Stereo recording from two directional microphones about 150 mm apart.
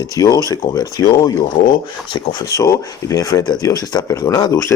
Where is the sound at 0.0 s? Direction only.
25° left (ahead or behind).